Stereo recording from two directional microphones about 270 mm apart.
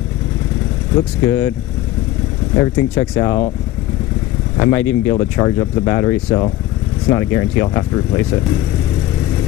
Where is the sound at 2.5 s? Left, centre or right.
Centre.